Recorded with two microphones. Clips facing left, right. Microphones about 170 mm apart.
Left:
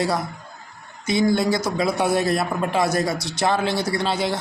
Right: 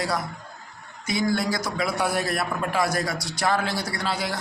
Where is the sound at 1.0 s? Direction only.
25° left (ahead or behind).